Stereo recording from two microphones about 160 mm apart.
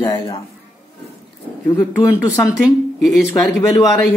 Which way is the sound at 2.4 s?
Centre (ahead or behind).